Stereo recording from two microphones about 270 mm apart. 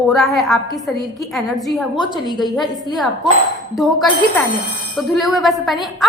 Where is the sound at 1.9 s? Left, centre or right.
Centre.